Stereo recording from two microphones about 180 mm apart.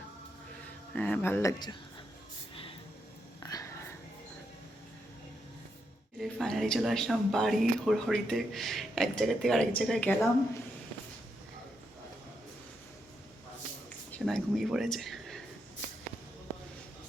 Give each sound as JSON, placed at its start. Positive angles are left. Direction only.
{"t": 0.9, "sound": "speech", "side_deg": 10}
{"t": 3.4, "sound": "a sound", "side_deg": 20}
{"t": 6.1, "sound": "speech", "side_deg": 0}
{"t": 14.1, "sound": "speech", "side_deg": 0}